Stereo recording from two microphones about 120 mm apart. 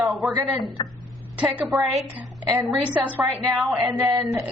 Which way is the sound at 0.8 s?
35° left (ahead or behind).